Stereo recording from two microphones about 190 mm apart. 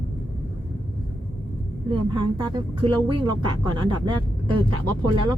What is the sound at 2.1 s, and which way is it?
Speech, 25° right (ahead or behind).